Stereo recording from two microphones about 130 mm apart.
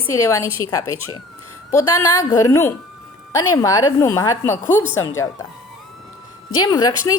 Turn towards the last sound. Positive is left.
turn(degrees=30)  # may be behind; listen again after turning